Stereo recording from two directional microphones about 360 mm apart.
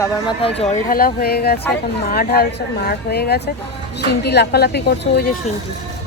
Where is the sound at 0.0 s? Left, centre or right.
Centre; by 5.4 s left.